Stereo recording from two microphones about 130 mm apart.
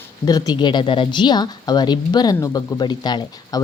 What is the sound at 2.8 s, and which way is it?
Speech, 35° left (ahead or behind).